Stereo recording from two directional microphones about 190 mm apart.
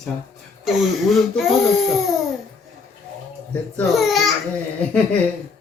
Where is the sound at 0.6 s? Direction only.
Centre (ahead or behind).